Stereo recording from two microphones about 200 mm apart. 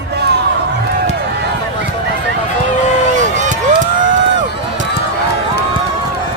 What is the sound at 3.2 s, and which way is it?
Run, 40° right (ahead or behind).